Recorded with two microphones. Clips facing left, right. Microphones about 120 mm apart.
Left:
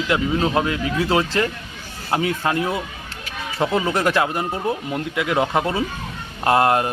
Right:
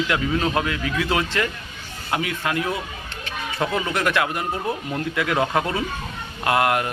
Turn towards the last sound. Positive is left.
turn(degrees=30)  # may be behind; listen again after turning